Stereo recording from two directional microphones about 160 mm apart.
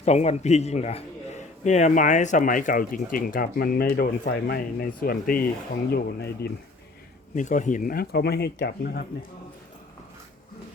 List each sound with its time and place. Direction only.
0.0 s a man's voice: 40° left (ahead or behind); by 5.5 s 65° left (ahead or behind)
5.9 s speech: 85° left
7.3 s speech: 50° left (ahead or behind); by 9.0 s 80° left